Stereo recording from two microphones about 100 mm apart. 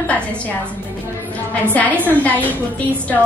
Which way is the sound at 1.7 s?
15° left (ahead or behind).